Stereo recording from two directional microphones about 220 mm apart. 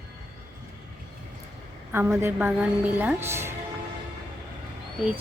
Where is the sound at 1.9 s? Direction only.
10° right (ahead or behind).